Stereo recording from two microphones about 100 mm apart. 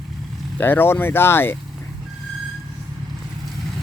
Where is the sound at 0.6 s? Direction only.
20° left (ahead or behind).